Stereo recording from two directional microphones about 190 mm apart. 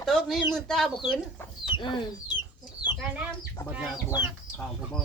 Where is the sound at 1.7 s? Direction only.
25° left (ahead or behind).